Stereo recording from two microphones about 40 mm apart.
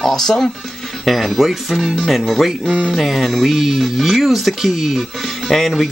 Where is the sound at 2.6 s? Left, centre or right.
Centre.